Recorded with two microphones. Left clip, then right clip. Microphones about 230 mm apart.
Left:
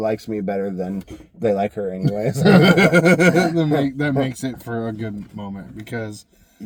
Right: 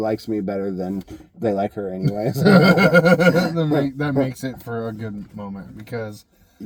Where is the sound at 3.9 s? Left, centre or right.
Centre.